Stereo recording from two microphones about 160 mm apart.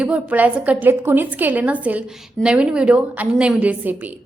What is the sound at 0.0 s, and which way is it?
A woman's voice, 10° right (ahead or behind).